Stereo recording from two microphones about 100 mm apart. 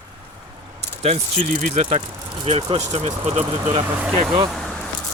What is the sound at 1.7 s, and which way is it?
Speech, 90° right.